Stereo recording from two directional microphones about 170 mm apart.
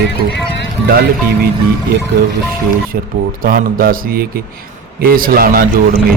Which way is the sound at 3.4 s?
55° right (ahead or behind).